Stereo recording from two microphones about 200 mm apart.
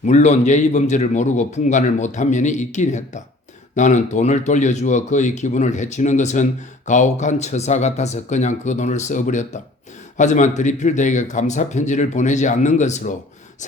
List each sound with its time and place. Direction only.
0.0 s speech: 35° left (ahead or behind)